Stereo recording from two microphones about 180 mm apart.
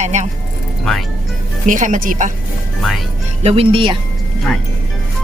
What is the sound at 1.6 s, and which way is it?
Speech, 45° right (ahead or behind).